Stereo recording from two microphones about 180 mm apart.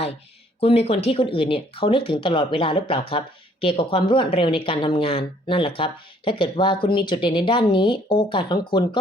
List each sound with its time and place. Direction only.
0.6 s speech: 35° left (ahead or behind)